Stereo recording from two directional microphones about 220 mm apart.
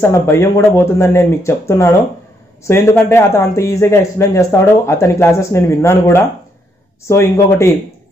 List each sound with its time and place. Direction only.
0.0 s a man's voice: 10° left (ahead or behind)